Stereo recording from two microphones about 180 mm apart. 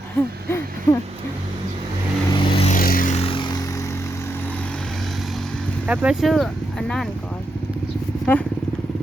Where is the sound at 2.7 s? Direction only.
50° left (ahead or behind); by 4.7 s 10° left (ahead or behind).